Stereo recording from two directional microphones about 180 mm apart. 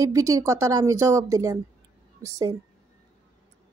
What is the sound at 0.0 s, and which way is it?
A woman's voice, 20° right (ahead or behind).